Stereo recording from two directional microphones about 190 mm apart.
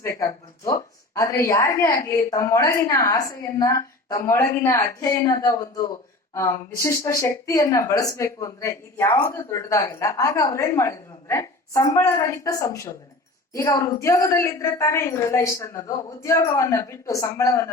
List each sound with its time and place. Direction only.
0.0 s a woman's voice: 15° left (ahead or behind)